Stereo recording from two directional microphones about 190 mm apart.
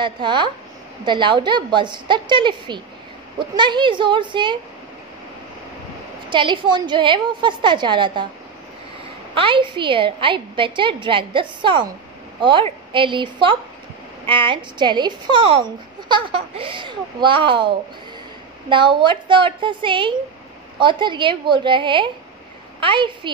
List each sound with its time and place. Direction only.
0.0 s a child's voice: 25° right (ahead or behind)
6.3 s a child's voice: 25° right (ahead or behind)
9.3 s a child's voice: 25° right (ahead or behind)